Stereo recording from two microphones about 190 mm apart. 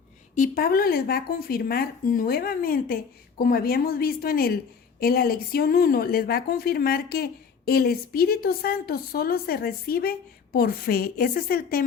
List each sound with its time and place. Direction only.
0.3 s speech: 50° left (ahead or behind)